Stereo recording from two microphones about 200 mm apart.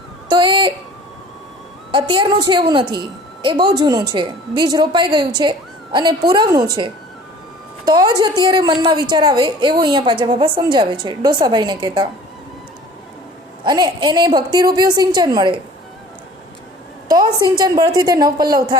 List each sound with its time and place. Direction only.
0.3 s speech: 25° right (ahead or behind)
1.9 s a woman's voice: 25° right (ahead or behind)
13.7 s a woman's voice: 20° right (ahead or behind)
17.1 s a woman's voice: 20° right (ahead or behind)